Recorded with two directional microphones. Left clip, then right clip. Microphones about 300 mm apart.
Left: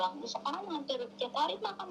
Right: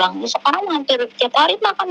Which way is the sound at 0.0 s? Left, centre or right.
Right.